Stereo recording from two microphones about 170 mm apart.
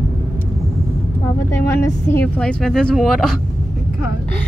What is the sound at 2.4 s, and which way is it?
Speech, 5° left (ahead or behind).